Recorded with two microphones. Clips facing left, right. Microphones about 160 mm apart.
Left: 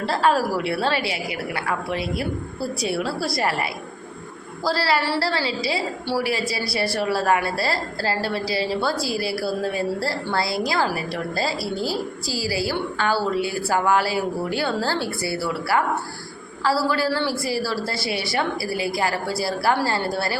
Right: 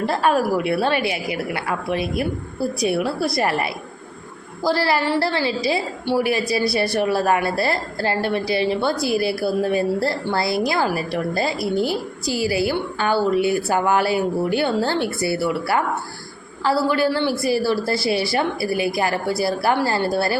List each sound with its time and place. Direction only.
0.0 s a woman's voice: 20° right (ahead or behind)